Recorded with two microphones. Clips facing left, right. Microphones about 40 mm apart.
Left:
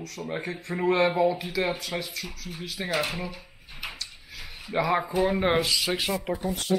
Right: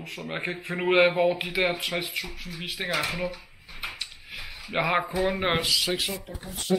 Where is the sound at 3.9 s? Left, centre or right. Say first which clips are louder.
Right 2 dB; right.